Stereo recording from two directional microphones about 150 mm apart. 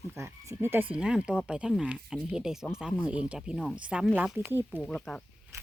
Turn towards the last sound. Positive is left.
turn(degrees=0)  # may be behind; listen again after turning